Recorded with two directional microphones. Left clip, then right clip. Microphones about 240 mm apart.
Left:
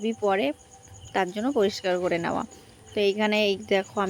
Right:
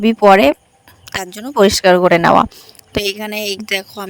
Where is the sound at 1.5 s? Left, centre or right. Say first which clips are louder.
Right 16 dB; right.